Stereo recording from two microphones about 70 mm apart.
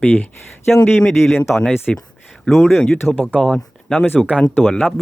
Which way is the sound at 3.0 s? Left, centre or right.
Left.